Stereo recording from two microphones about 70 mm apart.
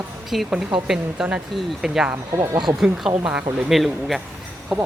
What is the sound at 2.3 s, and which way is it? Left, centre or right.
Speech, right.